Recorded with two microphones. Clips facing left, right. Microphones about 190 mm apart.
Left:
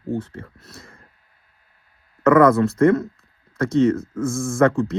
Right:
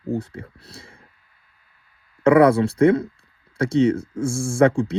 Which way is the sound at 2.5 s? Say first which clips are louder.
Even; 30° right (ahead or behind).